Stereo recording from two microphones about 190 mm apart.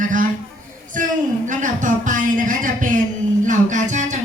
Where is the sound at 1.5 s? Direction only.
40° right (ahead or behind).